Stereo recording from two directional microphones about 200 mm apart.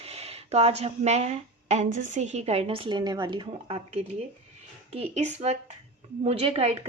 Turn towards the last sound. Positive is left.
turn(degrees=-30)  # may be behind; listen again after turning